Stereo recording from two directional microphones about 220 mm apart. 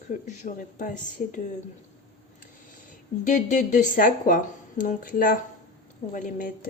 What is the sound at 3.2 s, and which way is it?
Speech, 35° left (ahead or behind).